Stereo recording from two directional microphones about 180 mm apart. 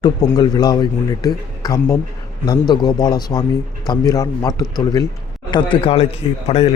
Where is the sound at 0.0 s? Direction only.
20° left (ahead or behind).